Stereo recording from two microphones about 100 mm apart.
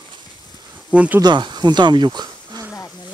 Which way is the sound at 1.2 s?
45° right (ahead or behind).